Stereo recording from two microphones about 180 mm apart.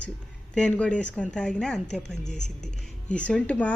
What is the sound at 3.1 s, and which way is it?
Speech, 5° left (ahead or behind).